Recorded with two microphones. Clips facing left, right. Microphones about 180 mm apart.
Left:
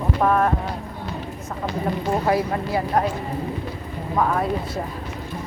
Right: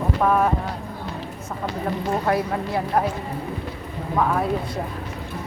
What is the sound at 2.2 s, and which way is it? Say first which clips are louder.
Speech: left 1 dB; centre (ahead or behind).